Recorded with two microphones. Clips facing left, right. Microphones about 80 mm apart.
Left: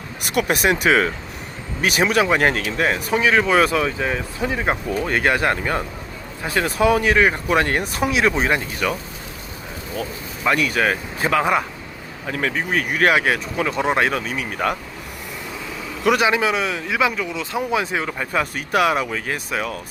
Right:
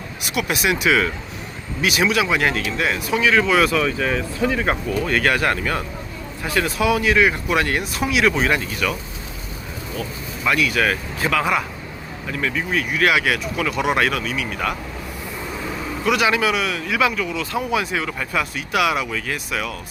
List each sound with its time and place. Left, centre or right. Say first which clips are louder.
0.2 s speech: left 3 dB; left
10.4 s speech: even; left
12.2 s speech: left 1 dB; left
16.2 s speech: even; left